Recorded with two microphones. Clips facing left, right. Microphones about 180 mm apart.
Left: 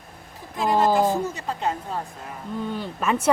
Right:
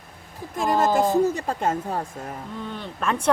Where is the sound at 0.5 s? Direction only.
45° right (ahead or behind).